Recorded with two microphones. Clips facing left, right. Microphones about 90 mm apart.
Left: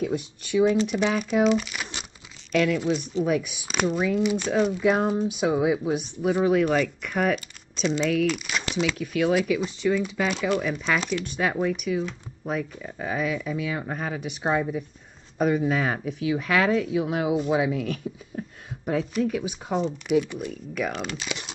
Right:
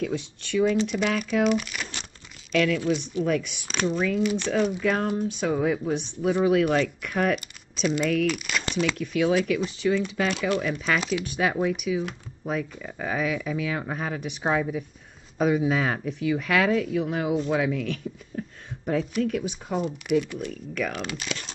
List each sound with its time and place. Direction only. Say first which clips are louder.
0.0 s speech: left 1 dB; 15° left (ahead or behind)
1.4 s speech: left 3 dB; centre (ahead or behind)
2.5 s speech: even; 10° left (ahead or behind)